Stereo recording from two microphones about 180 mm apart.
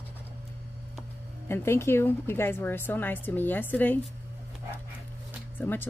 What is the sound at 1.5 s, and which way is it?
A woman's voice, 15° left (ahead or behind).